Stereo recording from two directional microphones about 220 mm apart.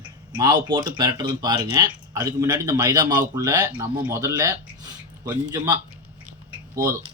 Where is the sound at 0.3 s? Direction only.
20° right (ahead or behind).